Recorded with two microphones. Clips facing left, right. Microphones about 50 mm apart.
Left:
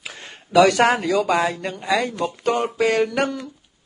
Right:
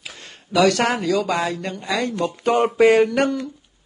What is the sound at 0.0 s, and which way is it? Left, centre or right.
Speech, centre.